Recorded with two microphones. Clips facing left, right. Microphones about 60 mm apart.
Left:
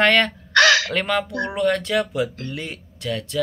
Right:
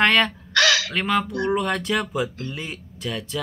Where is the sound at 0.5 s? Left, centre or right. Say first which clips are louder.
Left 5 dB; left.